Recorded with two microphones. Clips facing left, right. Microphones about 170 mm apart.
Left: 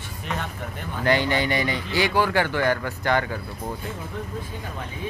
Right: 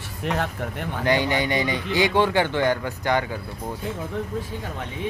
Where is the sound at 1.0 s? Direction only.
15° right (ahead or behind).